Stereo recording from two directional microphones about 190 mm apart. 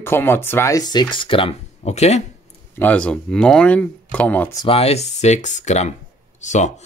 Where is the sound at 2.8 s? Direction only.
5° left (ahead or behind).